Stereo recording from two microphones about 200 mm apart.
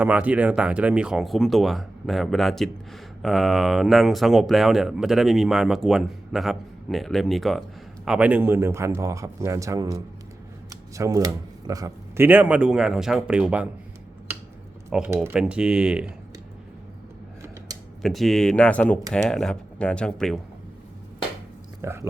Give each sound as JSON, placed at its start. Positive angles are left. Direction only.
{"t": 0.0, "sound": "speech", "side_deg": -5}
{"t": 14.8, "sound": "speech", "side_deg": -5}
{"t": 17.7, "sound": "computer keyboard", "side_deg": -20}
{"t": 18.0, "sound": "speech", "side_deg": 0}
{"t": 21.8, "sound": "speech", "side_deg": -15}